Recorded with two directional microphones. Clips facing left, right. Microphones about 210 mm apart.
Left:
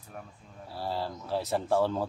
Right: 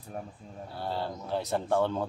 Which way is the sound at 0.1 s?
35° right (ahead or behind).